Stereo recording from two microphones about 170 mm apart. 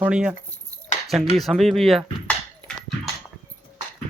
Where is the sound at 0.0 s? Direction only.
5° right (ahead or behind).